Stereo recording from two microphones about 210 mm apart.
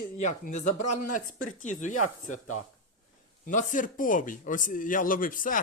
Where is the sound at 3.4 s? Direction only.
35° left (ahead or behind).